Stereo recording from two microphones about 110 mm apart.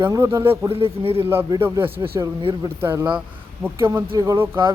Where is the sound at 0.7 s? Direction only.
60° right (ahead or behind).